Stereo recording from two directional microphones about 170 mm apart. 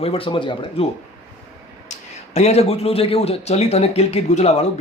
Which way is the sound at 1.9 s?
40° left (ahead or behind).